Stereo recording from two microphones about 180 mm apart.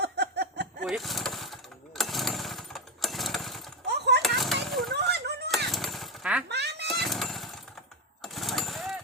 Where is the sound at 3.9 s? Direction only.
65° right (ahead or behind).